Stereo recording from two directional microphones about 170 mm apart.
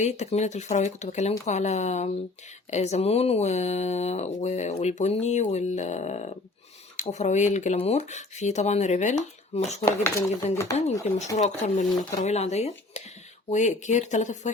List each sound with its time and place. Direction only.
0.0 s speech: 40° left (ahead or behind)
9.8 s speech: 15° left (ahead or behind)
11.3 s speech: 45° left (ahead or behind)